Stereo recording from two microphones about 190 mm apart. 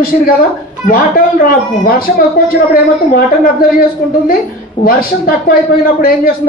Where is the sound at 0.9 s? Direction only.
50° left (ahead or behind).